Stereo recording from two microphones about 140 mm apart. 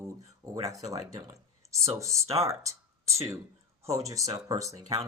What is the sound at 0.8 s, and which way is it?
Speech, 25° right (ahead or behind).